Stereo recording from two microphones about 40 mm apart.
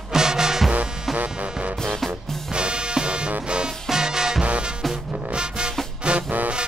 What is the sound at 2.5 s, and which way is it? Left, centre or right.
Music, right.